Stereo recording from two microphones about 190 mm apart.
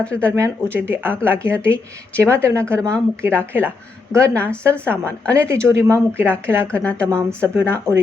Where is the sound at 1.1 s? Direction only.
5° left (ahead or behind).